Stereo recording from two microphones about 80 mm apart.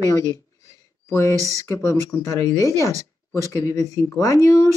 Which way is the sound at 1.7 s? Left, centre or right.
Left.